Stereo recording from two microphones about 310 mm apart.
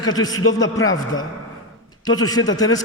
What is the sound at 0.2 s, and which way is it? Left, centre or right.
Speech, centre.